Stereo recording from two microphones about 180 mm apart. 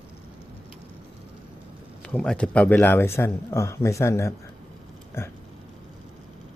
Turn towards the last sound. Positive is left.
turn(degrees=15)  # may be behind; listen again after turning